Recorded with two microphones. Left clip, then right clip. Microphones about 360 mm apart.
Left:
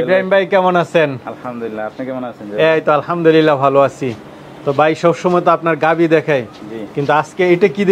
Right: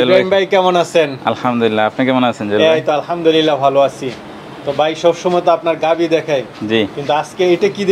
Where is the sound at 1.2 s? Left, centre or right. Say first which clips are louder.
Right 10 dB; right.